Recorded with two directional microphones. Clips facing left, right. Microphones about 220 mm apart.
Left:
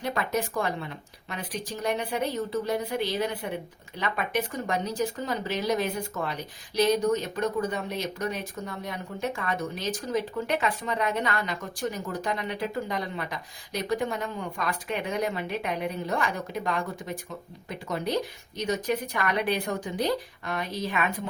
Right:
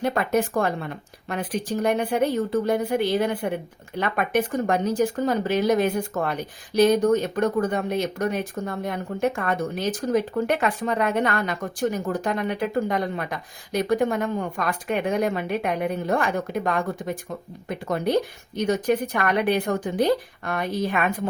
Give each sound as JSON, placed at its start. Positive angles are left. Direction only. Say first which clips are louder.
{"t": 0.0, "sound": "speech", "louder": "right 6 dB", "side_deg": -50}